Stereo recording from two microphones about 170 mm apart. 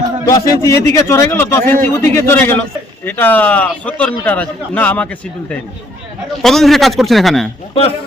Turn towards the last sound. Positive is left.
turn(degrees=35)  # may be behind; listen again after turning